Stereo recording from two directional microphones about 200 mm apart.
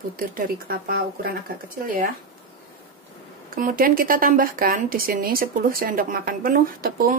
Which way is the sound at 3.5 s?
45° right (ahead or behind).